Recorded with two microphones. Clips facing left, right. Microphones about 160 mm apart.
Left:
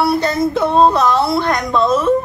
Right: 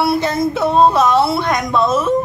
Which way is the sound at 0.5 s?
5° right (ahead or behind).